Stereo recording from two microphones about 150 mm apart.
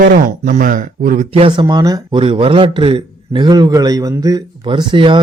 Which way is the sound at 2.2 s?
35° right (ahead or behind).